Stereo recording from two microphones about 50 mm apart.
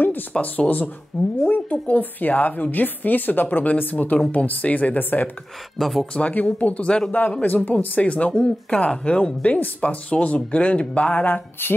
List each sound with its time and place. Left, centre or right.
0.4 s a woman's voice: left
4.9 s a woman's voice: left
5.8 s speech: centre
6.3 s a woman's voice: left
11.1 s a woman's voice: left